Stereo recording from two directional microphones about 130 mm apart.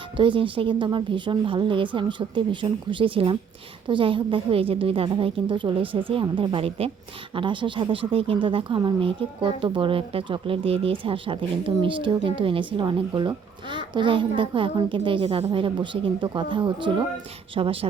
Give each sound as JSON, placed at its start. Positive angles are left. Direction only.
{"t": 0.2, "sound": "a woman's voice", "side_deg": -40}